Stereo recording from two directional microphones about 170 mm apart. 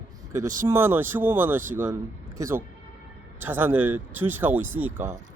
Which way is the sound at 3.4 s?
10° right (ahead or behind).